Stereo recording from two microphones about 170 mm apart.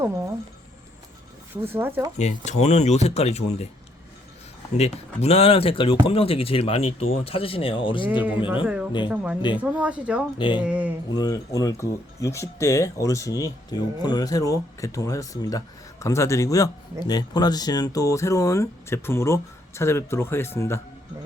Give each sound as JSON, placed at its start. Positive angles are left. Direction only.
{"t": 0.0, "sound": "a sound", "side_deg": -15}
{"t": 1.6, "sound": "speech", "side_deg": -15}
{"t": 2.1, "sound": "speech", "side_deg": 40}
{"t": 4.8, "sound": "speech", "side_deg": 40}
{"t": 8.6, "sound": "speech", "side_deg": -5}
{"t": 10.3, "sound": "speech", "side_deg": 30}
{"t": 10.6, "sound": "speech", "side_deg": -5}
{"t": 11.2, "sound": "speech", "side_deg": 20}